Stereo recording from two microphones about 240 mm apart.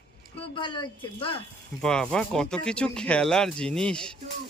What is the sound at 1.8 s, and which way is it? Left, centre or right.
Speech, centre.